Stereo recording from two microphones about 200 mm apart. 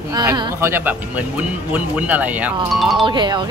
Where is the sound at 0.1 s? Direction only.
20° right (ahead or behind); by 3.1 s centre (ahead or behind).